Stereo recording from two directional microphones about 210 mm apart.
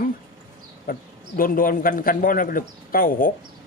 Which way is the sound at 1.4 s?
40° left (ahead or behind).